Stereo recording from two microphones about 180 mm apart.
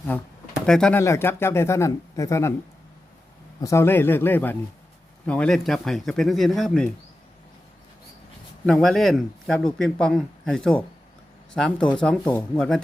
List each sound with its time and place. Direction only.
0.1 s speech: 5° left (ahead or behind)
0.9 s speech: 15° left (ahead or behind)
3.6 s speech: 15° left (ahead or behind)
8.6 s speech: centre (ahead or behind)